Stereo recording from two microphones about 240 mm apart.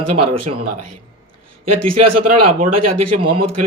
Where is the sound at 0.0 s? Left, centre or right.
Right.